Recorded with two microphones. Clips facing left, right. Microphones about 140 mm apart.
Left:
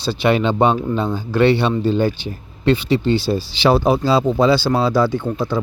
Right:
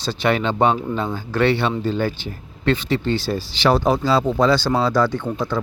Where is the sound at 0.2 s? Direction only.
15° left (ahead or behind).